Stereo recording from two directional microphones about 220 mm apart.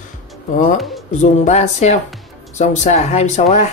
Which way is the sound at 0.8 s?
Centre (ahead or behind).